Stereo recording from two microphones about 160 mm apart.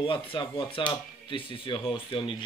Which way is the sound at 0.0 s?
35° left (ahead or behind).